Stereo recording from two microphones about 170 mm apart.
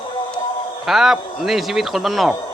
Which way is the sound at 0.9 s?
Centre (ahead or behind).